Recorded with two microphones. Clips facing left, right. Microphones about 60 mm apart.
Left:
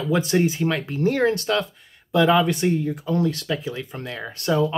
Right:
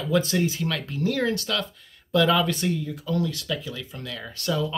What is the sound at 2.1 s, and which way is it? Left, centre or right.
Speech, left.